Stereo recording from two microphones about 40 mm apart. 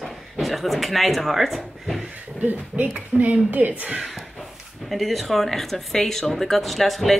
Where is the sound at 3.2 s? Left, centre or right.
Right.